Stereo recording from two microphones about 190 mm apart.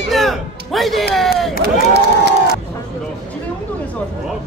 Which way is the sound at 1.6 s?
60° right (ahead or behind).